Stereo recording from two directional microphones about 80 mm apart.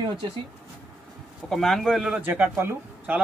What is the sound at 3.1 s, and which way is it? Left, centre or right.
Speech, right.